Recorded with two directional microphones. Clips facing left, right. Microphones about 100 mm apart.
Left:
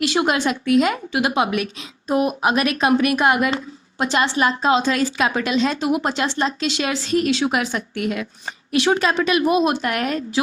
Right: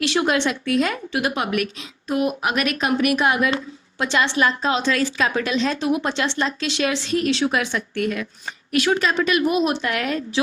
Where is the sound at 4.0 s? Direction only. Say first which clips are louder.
Left 1 dB; 40° left (ahead or behind).